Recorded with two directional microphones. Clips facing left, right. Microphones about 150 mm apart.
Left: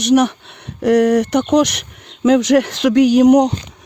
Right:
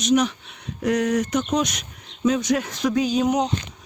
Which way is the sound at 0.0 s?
65° left (ahead or behind).